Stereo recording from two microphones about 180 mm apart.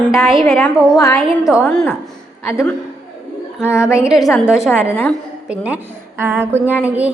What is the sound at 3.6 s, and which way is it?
Speech, 15° left (ahead or behind).